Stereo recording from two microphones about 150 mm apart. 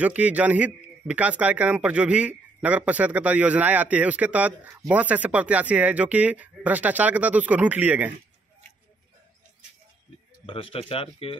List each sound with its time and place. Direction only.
0.0 s speech: 10° right (ahead or behind)
10.4 s speech: 40° left (ahead or behind)